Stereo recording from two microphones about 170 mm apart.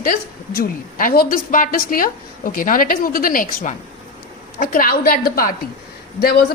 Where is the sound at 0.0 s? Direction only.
60° left (ahead or behind).